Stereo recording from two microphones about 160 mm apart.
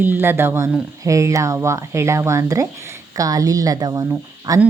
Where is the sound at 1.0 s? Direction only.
20° right (ahead or behind).